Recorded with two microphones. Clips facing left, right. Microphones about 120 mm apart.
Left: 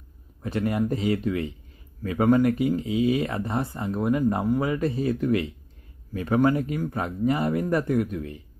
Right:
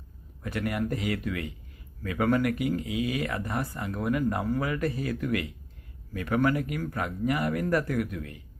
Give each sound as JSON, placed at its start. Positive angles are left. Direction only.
{"t": 0.4, "sound": "speech", "side_deg": 25}